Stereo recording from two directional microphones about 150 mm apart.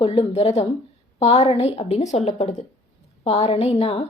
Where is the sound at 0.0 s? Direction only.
45° left (ahead or behind).